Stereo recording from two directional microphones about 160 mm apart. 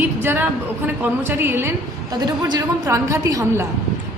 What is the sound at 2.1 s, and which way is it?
A woman's voice, 25° right (ahead or behind).